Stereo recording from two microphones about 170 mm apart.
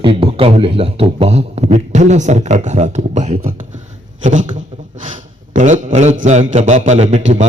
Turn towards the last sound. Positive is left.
turn(degrees=-40)  # may be behind; listen again after turning